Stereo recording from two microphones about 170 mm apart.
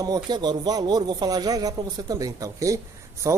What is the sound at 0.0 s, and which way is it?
A man's voice, 25° right (ahead or behind).